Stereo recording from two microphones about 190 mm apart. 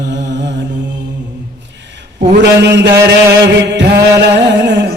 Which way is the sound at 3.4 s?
65° right (ahead or behind).